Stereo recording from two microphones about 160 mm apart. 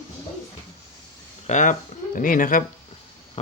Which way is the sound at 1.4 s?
50° left (ahead or behind).